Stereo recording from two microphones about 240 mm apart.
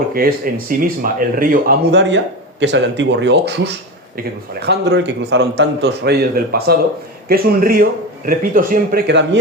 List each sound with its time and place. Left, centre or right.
0.1 s speech: right
4.6 s speech: right